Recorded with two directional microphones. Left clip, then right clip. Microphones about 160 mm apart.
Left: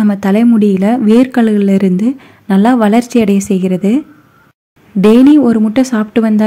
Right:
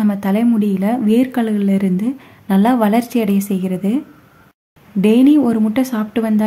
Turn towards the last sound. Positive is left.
turn(degrees=30)  # may be behind; listen again after turning